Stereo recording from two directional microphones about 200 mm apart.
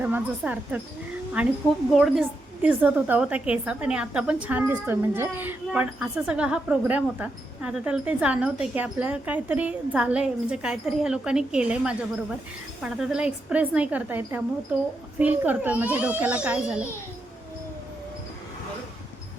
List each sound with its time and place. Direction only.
0.0 s a woman's voice: 10° right (ahead or behind)